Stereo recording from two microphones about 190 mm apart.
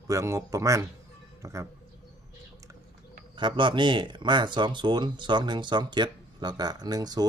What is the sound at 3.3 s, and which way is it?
Speech, 25° right (ahead or behind).